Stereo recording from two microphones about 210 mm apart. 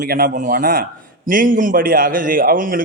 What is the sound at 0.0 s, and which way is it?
A man's voice, 40° right (ahead or behind).